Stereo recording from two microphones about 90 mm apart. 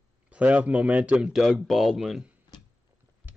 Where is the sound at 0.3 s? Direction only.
15° right (ahead or behind).